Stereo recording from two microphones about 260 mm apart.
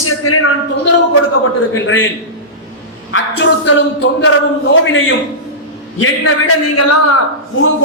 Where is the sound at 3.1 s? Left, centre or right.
Left.